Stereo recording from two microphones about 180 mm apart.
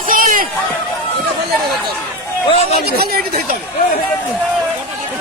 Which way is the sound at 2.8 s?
60° right (ahead or behind).